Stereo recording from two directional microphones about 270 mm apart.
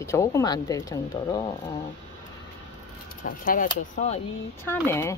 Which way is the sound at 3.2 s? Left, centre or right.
Left.